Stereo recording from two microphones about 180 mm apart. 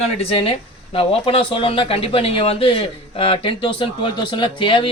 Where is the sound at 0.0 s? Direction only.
35° left (ahead or behind).